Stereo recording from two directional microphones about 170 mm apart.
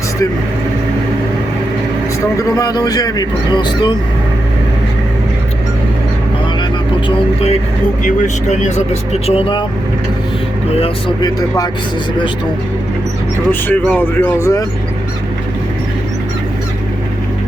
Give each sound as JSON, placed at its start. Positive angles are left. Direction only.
{"t": 2.6, "sound": "speech", "side_deg": 20}
{"t": 8.0, "sound": "speech", "side_deg": 45}
{"t": 10.8, "sound": "speech", "side_deg": 35}
{"t": 11.3, "sound": "speech", "side_deg": 20}
{"t": 13.5, "sound": "speech", "side_deg": 10}